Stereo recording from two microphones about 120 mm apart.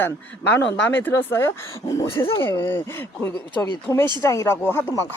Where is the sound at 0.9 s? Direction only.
15° left (ahead or behind).